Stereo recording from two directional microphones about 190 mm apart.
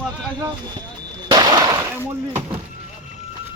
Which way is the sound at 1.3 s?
20° right (ahead or behind).